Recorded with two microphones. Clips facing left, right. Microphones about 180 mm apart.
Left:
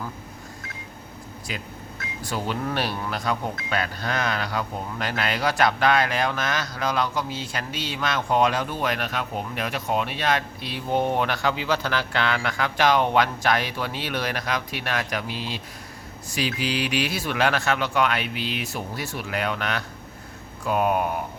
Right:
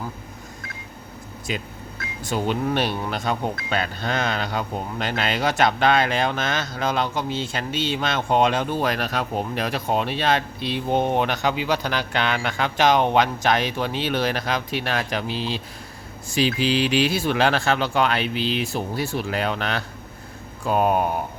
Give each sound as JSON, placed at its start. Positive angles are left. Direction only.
{"t": 1.5, "sound": "speech", "side_deg": -25}